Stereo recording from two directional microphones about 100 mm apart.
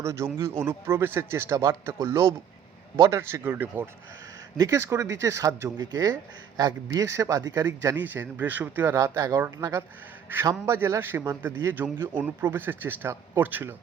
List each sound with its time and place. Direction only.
0.0 s a man's voice: 30° right (ahead or behind)
4.5 s a man's voice: 35° right (ahead or behind); by 9.0 s 20° right (ahead or behind)
9.0 s a man's voice: 30° right (ahead or behind)